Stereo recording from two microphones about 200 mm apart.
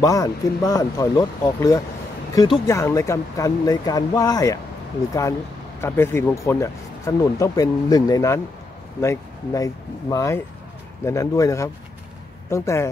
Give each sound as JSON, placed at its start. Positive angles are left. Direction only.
{"t": 0.0, "sound": "speech", "side_deg": 15}
{"t": 5.8, "sound": "speech", "side_deg": 10}